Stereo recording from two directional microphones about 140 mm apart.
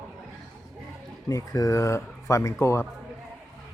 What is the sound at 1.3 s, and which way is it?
Speech, 25° left (ahead or behind).